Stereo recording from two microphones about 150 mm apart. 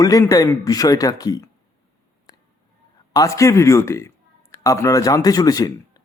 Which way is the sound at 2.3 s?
25° left (ahead or behind).